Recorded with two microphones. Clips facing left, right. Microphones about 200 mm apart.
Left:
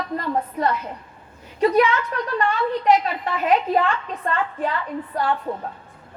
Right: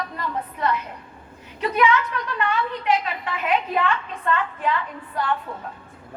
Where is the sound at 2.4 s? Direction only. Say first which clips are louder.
Left 3 dB; 40° left (ahead or behind).